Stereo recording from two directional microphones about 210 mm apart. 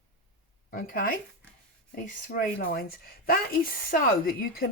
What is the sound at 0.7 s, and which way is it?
Speech, 40° left (ahead or behind).